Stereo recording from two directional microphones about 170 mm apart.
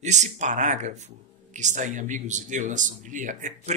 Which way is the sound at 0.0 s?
45° right (ahead or behind).